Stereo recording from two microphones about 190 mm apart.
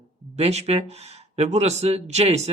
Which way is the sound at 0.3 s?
35° right (ahead or behind).